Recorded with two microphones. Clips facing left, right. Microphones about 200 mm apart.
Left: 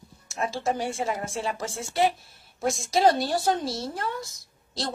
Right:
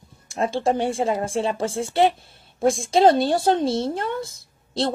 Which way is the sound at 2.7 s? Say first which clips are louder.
Right 4 dB; 25° right (ahead or behind).